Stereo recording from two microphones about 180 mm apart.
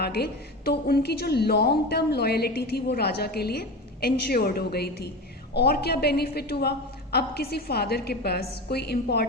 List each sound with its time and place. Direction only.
0.0 s a woman's voice: 60° left (ahead or behind)